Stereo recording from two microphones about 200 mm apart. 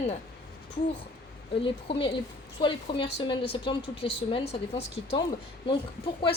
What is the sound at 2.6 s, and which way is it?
A woman's voice, 25° left (ahead or behind).